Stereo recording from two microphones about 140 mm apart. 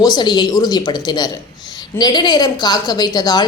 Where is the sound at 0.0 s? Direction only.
30° left (ahead or behind).